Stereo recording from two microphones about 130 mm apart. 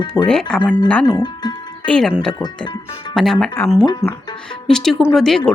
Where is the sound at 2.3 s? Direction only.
35° left (ahead or behind).